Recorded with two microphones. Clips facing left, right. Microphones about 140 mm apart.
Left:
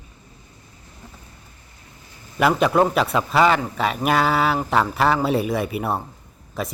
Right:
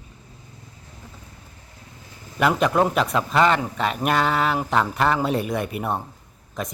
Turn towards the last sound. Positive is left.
turn(degrees=5)  # may be behind; listen again after turning